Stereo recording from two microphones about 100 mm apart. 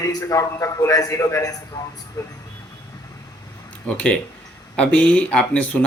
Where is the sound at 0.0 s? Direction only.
35° left (ahead or behind).